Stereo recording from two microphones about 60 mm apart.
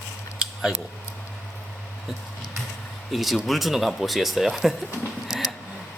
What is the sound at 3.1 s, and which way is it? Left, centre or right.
Speech, centre.